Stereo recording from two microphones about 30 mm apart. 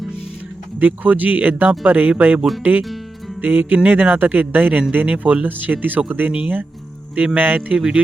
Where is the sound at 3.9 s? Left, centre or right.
Right.